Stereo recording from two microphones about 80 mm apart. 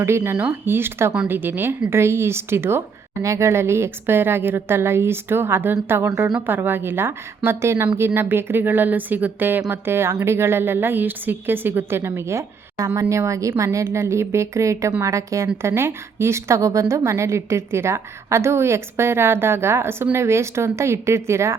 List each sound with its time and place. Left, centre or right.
0.0 s a woman's voice: right